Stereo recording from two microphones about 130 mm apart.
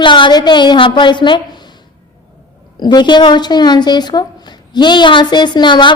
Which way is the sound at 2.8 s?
35° left (ahead or behind).